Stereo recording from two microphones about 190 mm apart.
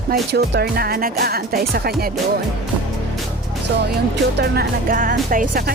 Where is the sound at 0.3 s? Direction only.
60° right (ahead or behind).